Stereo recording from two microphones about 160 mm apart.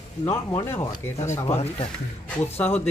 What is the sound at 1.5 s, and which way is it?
Speech, 40° left (ahead or behind).